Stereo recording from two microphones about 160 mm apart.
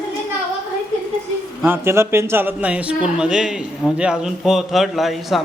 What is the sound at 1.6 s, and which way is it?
Speech, 15° right (ahead or behind).